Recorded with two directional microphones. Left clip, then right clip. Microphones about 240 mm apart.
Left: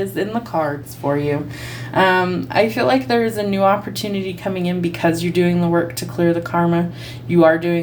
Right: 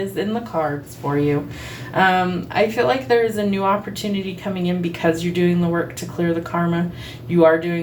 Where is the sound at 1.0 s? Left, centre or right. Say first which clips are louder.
Left 1 dB; left.